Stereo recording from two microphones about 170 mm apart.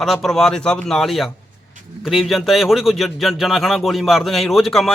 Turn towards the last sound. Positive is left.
turn(degrees=0)  # may be behind; listen again after turning